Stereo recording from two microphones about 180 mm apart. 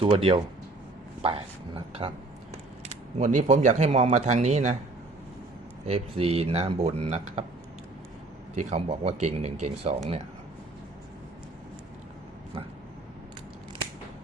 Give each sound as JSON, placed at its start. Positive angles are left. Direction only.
{"t": 0.0, "sound": "speech", "side_deg": -30}
{"t": 2.9, "sound": "speech", "side_deg": -45}
{"t": 5.9, "sound": "speech", "side_deg": -35}
{"t": 8.5, "sound": "speech", "side_deg": -35}